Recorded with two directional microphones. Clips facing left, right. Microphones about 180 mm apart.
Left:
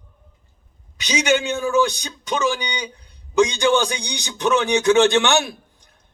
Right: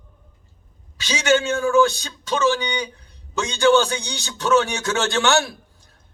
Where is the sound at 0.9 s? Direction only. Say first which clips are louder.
Even; 15° left (ahead or behind).